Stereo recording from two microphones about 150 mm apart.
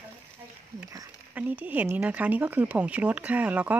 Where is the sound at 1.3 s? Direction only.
10° right (ahead or behind).